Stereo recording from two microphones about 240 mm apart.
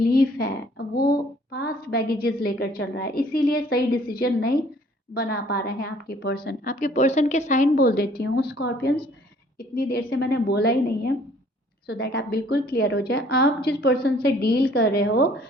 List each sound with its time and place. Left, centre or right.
0.0 s a woman's voice: left